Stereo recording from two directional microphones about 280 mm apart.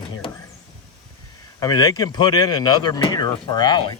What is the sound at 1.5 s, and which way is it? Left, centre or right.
Speech, centre.